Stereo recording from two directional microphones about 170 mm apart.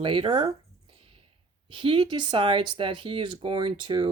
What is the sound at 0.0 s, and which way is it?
Speech, 30° right (ahead or behind).